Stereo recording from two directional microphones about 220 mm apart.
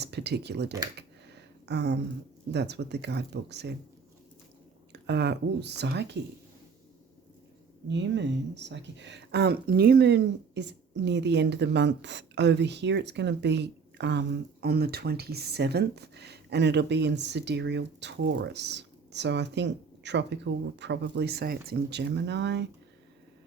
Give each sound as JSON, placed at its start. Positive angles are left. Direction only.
{"t": 0.0, "sound": "speech", "side_deg": -50}
{"t": 1.6, "sound": "a sound", "side_deg": -50}
{"t": 2.5, "sound": "speech", "side_deg": -50}
{"t": 4.9, "sound": "speech", "side_deg": -50}
{"t": 7.9, "sound": "speech", "side_deg": -50}